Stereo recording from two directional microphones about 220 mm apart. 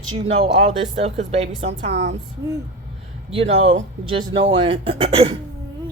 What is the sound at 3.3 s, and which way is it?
A woman's voice, 25° right (ahead or behind).